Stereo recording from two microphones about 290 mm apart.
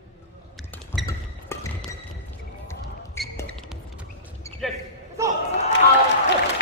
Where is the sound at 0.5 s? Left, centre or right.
Centre.